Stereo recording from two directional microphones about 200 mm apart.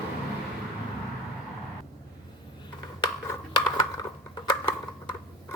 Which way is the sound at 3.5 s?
20° left (ahead or behind).